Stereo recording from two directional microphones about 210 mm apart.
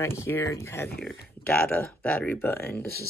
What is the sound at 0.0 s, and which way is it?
Speech, 10° left (ahead or behind).